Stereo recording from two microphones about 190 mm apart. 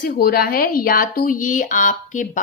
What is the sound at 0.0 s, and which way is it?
A woman's voice, 50° left (ahead or behind).